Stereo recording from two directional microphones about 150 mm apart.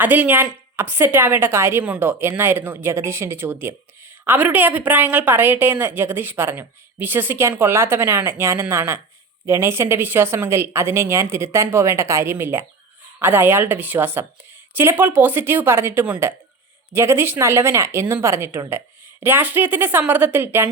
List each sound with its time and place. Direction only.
0.0 s a woman's voice: 10° right (ahead or behind)